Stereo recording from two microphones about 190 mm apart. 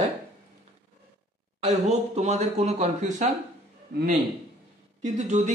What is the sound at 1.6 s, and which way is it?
A man's voice, 35° right (ahead or behind).